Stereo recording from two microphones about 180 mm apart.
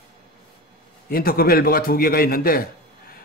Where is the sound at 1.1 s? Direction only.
55° left (ahead or behind).